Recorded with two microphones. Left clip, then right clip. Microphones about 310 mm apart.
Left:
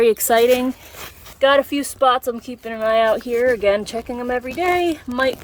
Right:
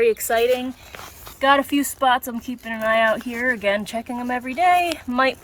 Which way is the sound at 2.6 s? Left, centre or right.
Centre.